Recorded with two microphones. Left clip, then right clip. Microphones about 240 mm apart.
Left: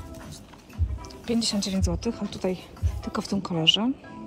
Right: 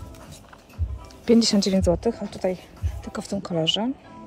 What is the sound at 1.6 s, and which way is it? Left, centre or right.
Speech, centre.